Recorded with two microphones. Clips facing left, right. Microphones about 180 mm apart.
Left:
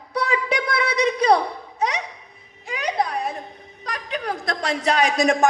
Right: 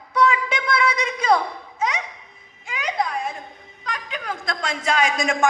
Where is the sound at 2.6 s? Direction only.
35° left (ahead or behind).